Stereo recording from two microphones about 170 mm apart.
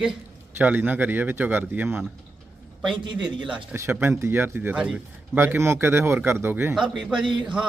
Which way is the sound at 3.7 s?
15° right (ahead or behind).